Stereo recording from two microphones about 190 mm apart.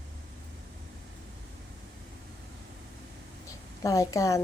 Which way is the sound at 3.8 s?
15° left (ahead or behind).